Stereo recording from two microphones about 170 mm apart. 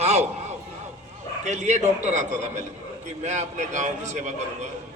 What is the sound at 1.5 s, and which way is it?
A man's voice, 45° right (ahead or behind).